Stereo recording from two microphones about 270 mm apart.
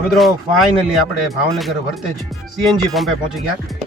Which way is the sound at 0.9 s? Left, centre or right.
Centre.